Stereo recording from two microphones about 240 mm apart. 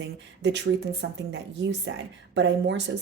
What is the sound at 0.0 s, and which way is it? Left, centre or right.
Speech, right.